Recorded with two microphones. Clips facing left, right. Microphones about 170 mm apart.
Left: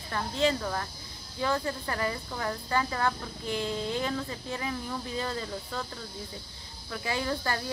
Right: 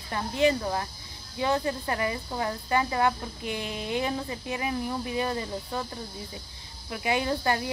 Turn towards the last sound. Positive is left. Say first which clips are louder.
# right 5 dB
turn(degrees=-20)  # may be behind; listen again after turning